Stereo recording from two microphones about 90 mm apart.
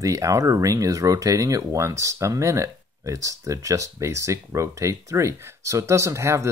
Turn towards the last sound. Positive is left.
turn(degrees=-35)  # may be behind; listen again after turning